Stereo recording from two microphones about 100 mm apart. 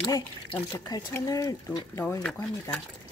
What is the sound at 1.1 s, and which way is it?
Speech, 35° left (ahead or behind).